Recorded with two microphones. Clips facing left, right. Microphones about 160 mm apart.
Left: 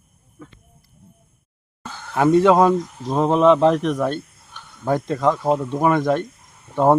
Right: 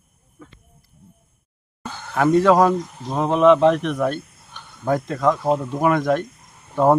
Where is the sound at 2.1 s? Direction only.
20° left (ahead or behind).